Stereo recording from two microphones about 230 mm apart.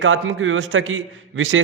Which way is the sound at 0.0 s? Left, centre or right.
Right.